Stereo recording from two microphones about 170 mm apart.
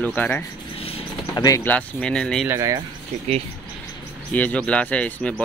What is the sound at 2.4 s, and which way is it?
Speech, 15° right (ahead or behind).